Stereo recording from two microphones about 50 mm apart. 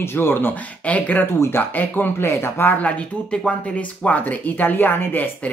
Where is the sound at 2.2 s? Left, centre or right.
Left.